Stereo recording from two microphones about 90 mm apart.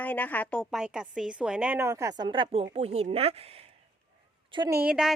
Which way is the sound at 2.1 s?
60° right (ahead or behind).